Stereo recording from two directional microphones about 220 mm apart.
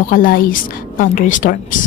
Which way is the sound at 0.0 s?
40° left (ahead or behind).